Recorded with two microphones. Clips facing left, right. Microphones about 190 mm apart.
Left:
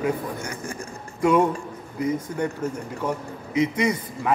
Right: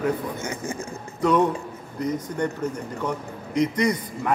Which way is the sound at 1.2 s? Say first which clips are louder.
Left 1 dB; 10° left (ahead or behind).